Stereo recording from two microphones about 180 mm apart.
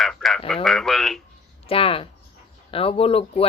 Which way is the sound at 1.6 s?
30° left (ahead or behind).